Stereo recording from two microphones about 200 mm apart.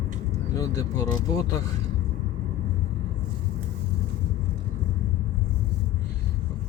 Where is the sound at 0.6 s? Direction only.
15° left (ahead or behind).